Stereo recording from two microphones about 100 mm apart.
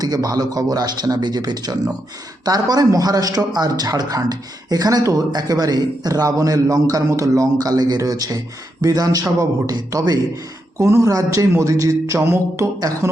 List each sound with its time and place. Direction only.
0.0 s a man's voice: 40° right (ahead or behind)